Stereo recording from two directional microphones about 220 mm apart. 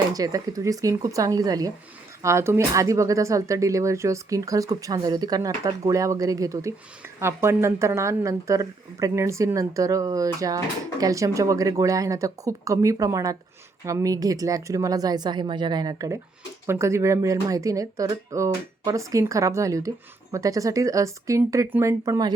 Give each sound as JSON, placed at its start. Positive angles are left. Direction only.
{"t": 0.1, "sound": "speech", "side_deg": -15}